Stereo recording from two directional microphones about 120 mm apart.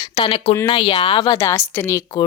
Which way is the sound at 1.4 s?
20° left (ahead or behind).